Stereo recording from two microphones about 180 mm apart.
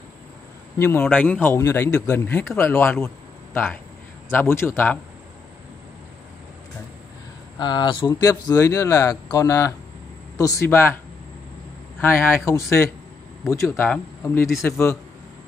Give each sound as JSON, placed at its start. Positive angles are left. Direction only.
{"t": 0.7, "sound": "a man's voice", "side_deg": 15}
{"t": 4.3, "sound": "a man's voice", "side_deg": 15}
{"t": 7.5, "sound": "a man's voice", "side_deg": 25}
{"t": 12.0, "sound": "a man's voice", "side_deg": 10}